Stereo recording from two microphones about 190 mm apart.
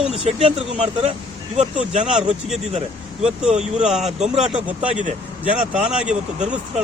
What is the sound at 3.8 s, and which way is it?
Speech, centre (ahead or behind).